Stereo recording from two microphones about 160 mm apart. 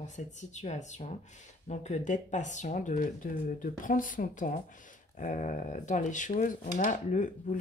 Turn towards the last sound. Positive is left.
turn(degrees=50)  # may be behind; listen again after turning